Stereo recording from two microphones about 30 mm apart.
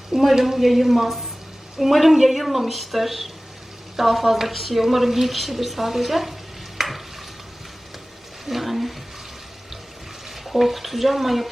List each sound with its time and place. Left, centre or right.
0.1 s speech: centre
0.4 s a woman's voice: centre
6.7 s stir: centre
8.4 s a sound: centre
10.2 s speech: centre